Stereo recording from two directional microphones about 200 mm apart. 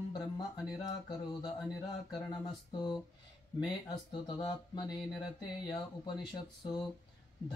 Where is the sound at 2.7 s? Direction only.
20° left (ahead or behind).